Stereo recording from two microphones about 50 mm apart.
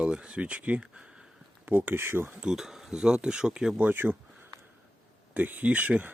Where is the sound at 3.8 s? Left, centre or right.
Right.